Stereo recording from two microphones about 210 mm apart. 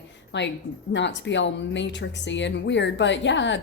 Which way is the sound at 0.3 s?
60° left (ahead or behind).